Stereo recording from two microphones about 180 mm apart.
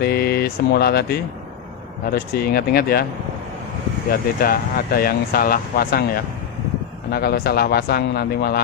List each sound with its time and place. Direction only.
0.0 s speech: 60° left (ahead or behind)
4.4 s speech: 55° left (ahead or behind)
7.1 s speech: 60° left (ahead or behind)